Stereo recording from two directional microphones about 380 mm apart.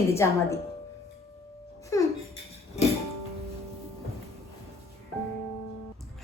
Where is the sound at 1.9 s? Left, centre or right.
Centre.